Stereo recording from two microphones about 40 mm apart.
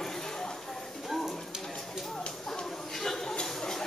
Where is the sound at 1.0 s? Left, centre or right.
Centre.